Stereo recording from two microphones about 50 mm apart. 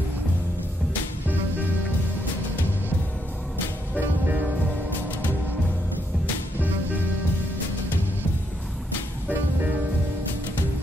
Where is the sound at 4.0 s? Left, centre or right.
Right.